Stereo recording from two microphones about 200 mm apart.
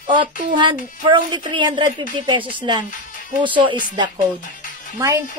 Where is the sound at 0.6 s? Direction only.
25° right (ahead or behind).